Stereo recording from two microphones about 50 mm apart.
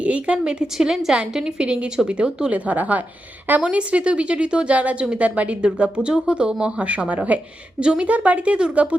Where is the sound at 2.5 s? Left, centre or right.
Right.